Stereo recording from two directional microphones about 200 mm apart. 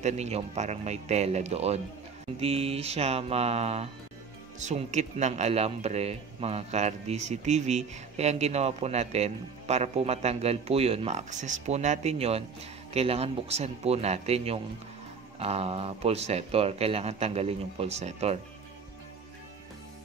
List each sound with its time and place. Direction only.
0.0 s a man's voice: 35° right (ahead or behind)